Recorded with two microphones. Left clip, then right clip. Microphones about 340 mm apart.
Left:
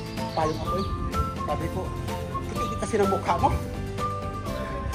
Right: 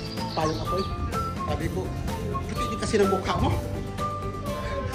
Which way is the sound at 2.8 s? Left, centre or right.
Centre.